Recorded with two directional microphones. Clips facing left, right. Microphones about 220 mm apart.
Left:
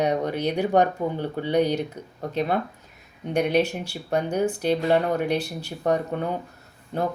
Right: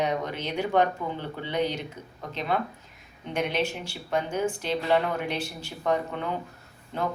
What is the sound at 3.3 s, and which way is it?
Speech, 40° left (ahead or behind).